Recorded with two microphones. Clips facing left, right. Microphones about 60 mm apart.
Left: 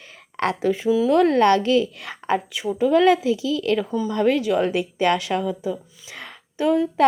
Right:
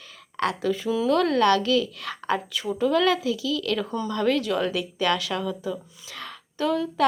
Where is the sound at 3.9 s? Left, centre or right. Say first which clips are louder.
Left 4 dB; centre.